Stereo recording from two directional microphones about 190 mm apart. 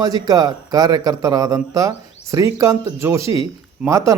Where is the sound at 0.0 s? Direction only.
20° right (ahead or behind).